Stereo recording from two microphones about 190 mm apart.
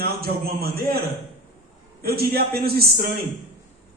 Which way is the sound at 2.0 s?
55° right (ahead or behind).